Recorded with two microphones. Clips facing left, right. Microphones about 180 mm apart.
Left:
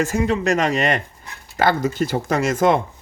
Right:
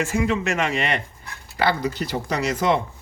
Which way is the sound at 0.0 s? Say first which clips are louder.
Left 3 dB; 40° left (ahead or behind).